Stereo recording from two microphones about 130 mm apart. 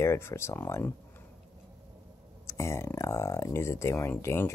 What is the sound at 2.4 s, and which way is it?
Speech, 20° left (ahead or behind).